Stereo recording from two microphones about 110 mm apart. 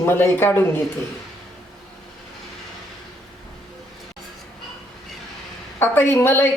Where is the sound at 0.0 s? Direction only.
20° left (ahead or behind).